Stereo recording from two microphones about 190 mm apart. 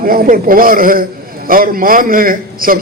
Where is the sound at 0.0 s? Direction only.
50° right (ahead or behind).